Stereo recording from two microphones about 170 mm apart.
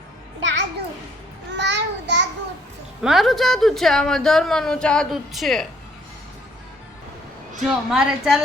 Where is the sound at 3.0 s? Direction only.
Centre (ahead or behind).